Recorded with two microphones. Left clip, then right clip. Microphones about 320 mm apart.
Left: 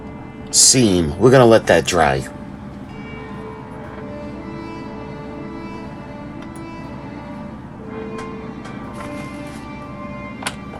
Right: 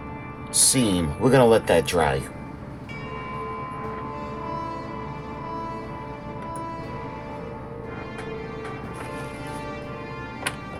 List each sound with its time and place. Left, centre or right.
0.5 s speech: left